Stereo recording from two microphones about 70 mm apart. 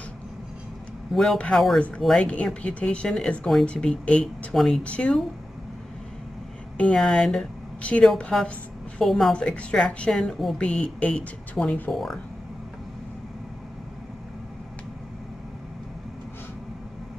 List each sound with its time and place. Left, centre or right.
1.1 s speech: centre
2.2 s speech: centre
4.6 s speech: centre
4.8 s speech: centre
7.0 s speech: centre
9.3 s speech: centre
11.9 s speech: centre